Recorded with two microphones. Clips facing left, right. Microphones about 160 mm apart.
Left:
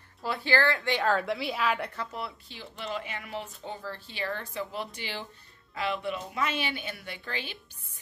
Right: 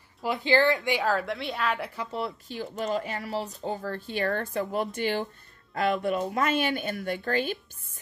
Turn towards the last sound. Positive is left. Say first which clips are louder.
# right 11 dB
turn(degrees=-45)  # may be behind; listen again after turning